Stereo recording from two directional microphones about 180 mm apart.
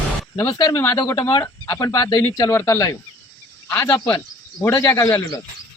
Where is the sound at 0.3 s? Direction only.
20° left (ahead or behind).